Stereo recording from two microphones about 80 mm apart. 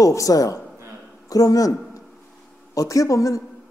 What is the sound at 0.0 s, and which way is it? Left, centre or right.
A woman's voice, left.